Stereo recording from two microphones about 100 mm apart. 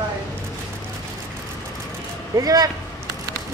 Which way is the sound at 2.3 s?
40° right (ahead or behind).